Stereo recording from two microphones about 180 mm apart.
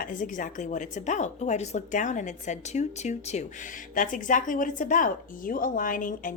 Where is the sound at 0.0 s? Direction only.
45° left (ahead or behind).